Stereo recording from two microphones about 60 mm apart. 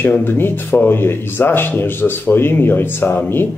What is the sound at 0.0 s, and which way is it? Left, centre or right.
A man's voice, left.